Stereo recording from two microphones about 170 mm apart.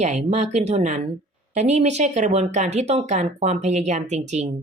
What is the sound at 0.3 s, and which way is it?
A woman's voice, 40° right (ahead or behind).